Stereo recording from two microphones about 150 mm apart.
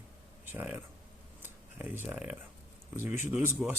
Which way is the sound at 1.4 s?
10° right (ahead or behind).